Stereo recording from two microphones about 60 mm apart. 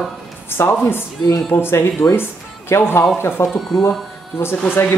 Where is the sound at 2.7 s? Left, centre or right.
Left.